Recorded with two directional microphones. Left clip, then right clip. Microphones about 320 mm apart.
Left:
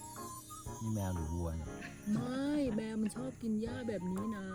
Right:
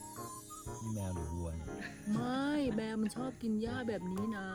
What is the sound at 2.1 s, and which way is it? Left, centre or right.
Speech, centre.